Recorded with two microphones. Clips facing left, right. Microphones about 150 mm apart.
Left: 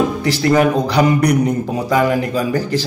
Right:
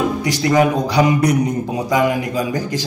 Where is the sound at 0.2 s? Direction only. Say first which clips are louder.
Left 1 dB; 15° right (ahead or behind).